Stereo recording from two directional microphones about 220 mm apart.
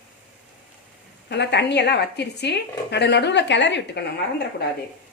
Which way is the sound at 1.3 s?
50° left (ahead or behind).